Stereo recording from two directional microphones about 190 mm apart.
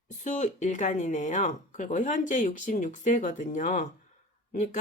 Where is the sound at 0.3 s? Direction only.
40° left (ahead or behind).